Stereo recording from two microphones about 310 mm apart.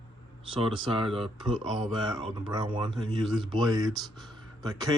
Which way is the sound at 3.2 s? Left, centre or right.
Centre.